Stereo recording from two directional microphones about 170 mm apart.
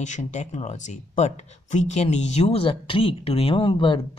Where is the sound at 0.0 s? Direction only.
45° left (ahead or behind).